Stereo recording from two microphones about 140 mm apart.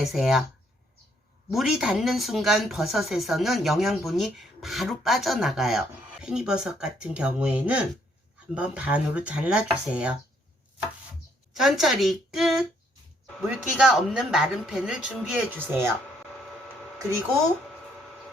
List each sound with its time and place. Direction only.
0.0 s speech: centre (ahead or behind)
1.5 s speech: 5° right (ahead or behind)
11.5 s speech: centre (ahead or behind)